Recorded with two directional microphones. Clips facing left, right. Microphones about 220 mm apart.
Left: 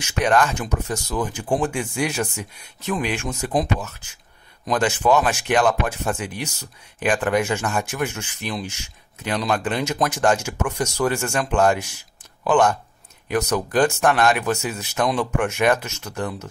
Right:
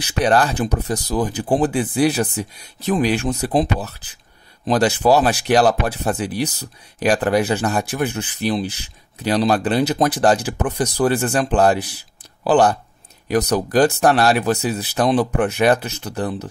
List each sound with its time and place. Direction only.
0.0 s speech: 35° right (ahead or behind)